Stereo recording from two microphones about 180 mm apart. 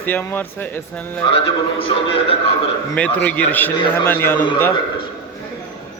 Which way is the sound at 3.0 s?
10° left (ahead or behind).